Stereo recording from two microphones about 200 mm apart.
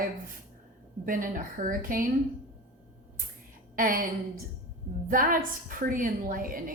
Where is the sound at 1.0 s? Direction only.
45° right (ahead or behind).